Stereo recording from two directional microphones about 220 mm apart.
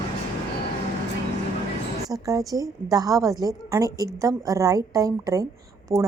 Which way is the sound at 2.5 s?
15° right (ahead or behind).